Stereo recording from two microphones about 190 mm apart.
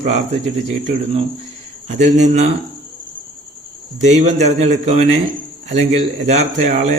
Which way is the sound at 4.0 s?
35° right (ahead or behind).